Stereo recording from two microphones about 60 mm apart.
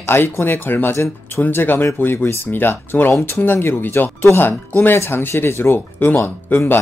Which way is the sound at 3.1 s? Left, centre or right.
Left.